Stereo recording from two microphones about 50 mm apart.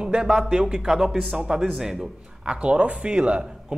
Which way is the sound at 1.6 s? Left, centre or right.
Centre.